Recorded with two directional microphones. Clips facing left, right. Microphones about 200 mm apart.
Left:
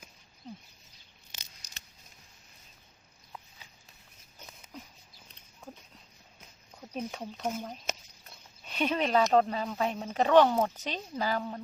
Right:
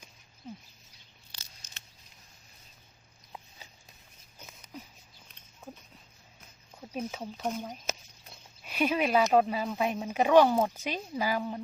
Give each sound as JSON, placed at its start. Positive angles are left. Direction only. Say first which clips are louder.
{"t": 0.4, "sound": "speech", "louder": "right 1 dB", "side_deg": -5}
{"t": 1.6, "sound": "a sound", "louder": "even", "side_deg": 35}
{"t": 6.9, "sound": "speech", "louder": "right 1 dB", "side_deg": -5}